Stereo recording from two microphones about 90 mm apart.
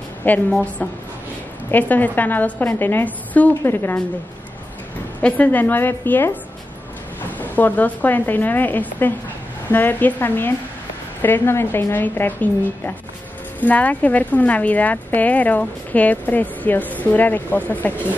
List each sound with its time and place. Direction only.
0.2 s a woman's voice: 20° left (ahead or behind)
1.7 s speech: 20° left (ahead or behind)
5.2 s speech: 15° left (ahead or behind)